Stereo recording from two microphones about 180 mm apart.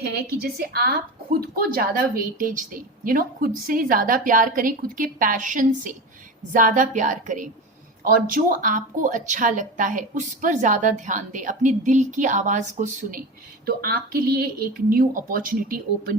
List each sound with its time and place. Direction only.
0.3 s a woman's voice: 60° right (ahead or behind)
13.7 s a woman's voice: 55° right (ahead or behind)